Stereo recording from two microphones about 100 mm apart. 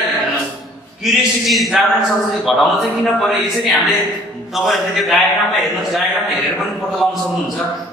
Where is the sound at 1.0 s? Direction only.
Centre (ahead or behind).